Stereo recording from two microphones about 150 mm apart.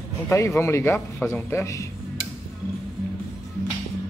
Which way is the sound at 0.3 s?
20° left (ahead or behind).